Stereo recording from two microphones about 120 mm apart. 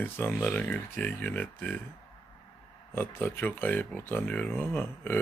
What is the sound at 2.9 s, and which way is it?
Speech, 20° left (ahead or behind).